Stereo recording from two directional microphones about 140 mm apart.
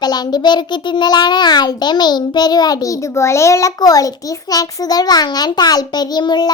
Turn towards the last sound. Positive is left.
turn(degrees=30)  # may be behind; listen again after turning